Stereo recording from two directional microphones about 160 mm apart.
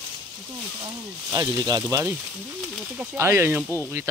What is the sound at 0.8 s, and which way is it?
Speech, 25° right (ahead or behind).